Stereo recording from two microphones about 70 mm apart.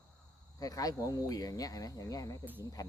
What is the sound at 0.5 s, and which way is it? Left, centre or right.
Speech, left.